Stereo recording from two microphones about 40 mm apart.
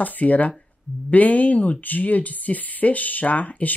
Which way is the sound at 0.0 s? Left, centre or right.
Left.